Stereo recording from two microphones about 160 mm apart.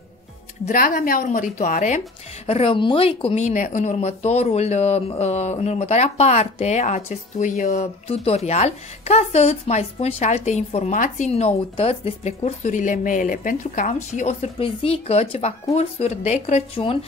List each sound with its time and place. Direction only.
0.7 s a woman's voice: 60° left (ahead or behind); by 17.0 s 35° left (ahead or behind)